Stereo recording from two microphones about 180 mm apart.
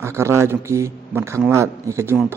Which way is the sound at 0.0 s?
15° right (ahead or behind).